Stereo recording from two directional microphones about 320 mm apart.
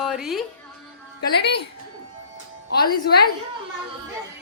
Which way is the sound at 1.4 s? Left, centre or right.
Left.